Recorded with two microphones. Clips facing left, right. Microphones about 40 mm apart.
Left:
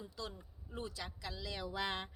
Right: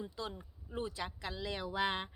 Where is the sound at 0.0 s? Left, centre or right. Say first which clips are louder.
Right 4 dB; right.